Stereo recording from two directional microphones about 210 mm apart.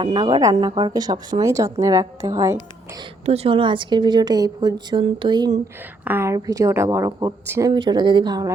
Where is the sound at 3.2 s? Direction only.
25° right (ahead or behind).